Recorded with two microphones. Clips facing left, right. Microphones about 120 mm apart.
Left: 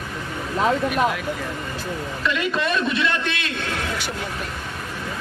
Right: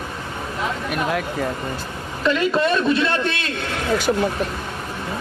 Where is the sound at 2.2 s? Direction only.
35° right (ahead or behind).